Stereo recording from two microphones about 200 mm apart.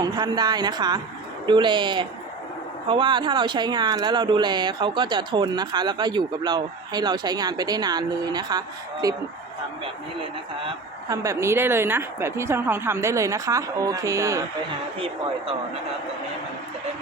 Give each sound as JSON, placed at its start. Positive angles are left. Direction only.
{"t": 0.0, "sound": "speech", "side_deg": -20}
{"t": 11.1, "sound": "a woman's voice", "side_deg": -15}
{"t": 14.9, "sound": "speech", "side_deg": -30}